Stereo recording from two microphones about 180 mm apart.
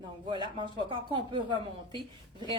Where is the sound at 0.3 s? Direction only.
25° right (ahead or behind).